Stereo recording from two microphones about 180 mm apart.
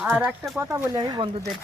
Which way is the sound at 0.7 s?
20° right (ahead or behind).